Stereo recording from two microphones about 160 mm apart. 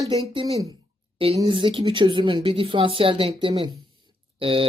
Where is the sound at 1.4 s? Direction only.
30° right (ahead or behind).